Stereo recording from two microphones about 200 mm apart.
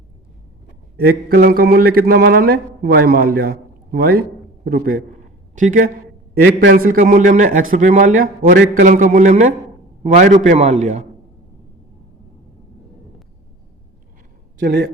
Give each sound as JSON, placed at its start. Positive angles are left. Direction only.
{"t": 0.9, "sound": "a man's voice", "side_deg": -50}
{"t": 5.5, "sound": "a man's voice", "side_deg": -40}
{"t": 14.6, "sound": "a man's voice", "side_deg": -50}